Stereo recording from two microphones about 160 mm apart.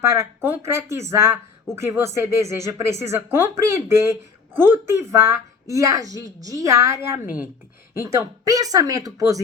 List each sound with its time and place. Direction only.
0.0 s a woman's voice: 20° right (ahead or behind)